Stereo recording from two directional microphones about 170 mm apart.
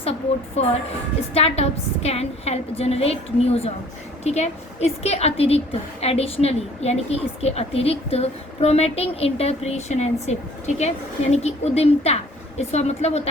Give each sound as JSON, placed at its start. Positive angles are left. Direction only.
{"t": 0.0, "sound": "a woman's voice", "side_deg": 35}